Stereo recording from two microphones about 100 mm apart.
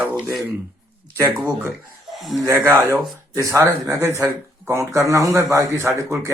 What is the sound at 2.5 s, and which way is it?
Speech, 25° right (ahead or behind).